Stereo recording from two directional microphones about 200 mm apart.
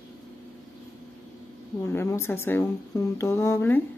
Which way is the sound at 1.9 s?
15° left (ahead or behind).